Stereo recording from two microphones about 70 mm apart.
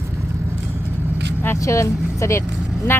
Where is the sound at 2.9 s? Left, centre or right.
Left.